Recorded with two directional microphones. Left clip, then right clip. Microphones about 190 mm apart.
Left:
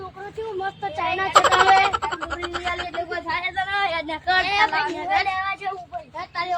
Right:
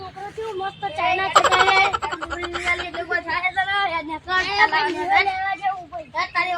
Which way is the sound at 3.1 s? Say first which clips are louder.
Right 7 dB; 40° right (ahead or behind).